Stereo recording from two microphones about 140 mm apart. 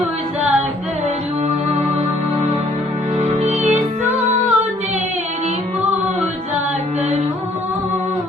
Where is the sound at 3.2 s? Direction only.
60° right (ahead or behind).